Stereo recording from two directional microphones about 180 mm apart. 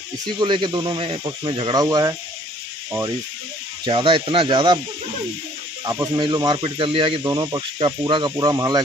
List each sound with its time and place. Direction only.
0.3 s speech: 25° right (ahead or behind)
3.8 s speech: 30° right (ahead or behind)
5.9 s speech: 20° right (ahead or behind)